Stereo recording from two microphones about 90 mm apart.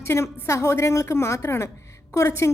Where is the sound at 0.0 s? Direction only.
30° left (ahead or behind).